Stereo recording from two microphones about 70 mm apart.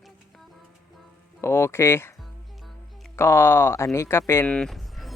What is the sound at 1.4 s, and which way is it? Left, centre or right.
Speech, left.